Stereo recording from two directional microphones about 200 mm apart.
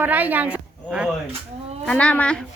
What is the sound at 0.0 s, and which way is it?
Speech, 10° right (ahead or behind).